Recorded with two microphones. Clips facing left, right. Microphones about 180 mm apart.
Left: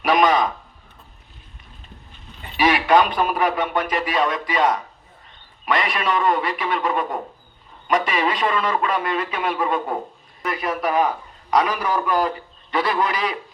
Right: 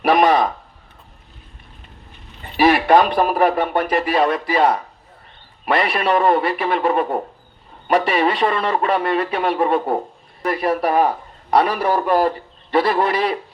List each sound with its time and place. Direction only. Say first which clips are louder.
2.6 s speech: right 3 dB; 35° right (ahead or behind)